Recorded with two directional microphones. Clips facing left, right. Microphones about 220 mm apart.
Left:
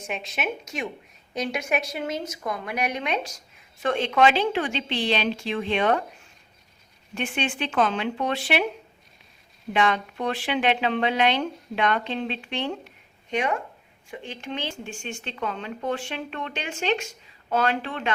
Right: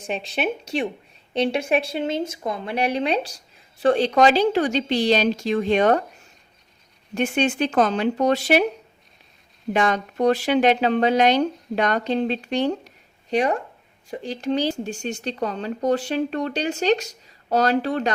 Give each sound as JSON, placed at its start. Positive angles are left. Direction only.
{"t": 0.0, "sound": "a woman's voice", "side_deg": -35}
{"t": 7.1, "sound": "a woman's voice", "side_deg": -40}
{"t": 9.7, "sound": "a woman's voice", "side_deg": -45}